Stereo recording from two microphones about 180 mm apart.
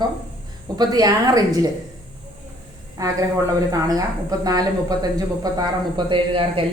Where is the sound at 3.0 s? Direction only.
20° right (ahead or behind).